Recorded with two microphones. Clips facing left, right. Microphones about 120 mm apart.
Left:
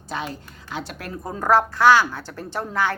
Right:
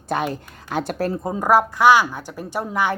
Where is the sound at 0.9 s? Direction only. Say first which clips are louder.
Right 11 dB; 35° right (ahead or behind).